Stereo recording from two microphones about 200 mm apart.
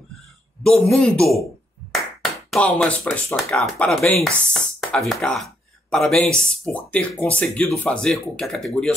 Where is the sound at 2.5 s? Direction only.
5° left (ahead or behind).